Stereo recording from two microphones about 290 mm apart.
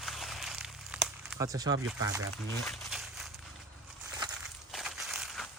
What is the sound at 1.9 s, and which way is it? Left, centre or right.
Speech, centre.